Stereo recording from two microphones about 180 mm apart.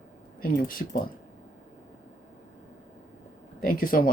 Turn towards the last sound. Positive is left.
turn(degrees=50)  # may be behind; listen again after turning